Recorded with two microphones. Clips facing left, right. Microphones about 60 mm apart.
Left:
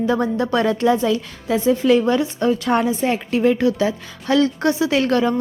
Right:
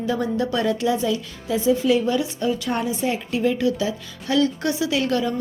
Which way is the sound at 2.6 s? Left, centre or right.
Left.